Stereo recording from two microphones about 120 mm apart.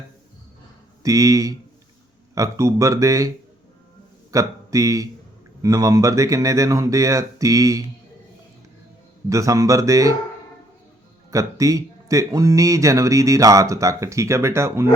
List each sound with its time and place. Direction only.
1.0 s speech: 30° right (ahead or behind)
9.3 s speech: 25° right (ahead or behind)
11.3 s speech: 30° right (ahead or behind)